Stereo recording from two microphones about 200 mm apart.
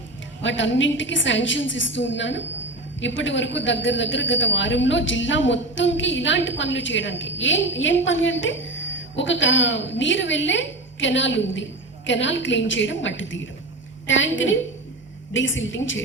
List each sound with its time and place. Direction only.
0.4 s a woman's voice: 65° left (ahead or behind)